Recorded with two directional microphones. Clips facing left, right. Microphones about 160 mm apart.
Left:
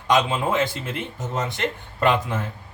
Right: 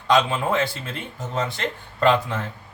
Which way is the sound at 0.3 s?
20° left (ahead or behind).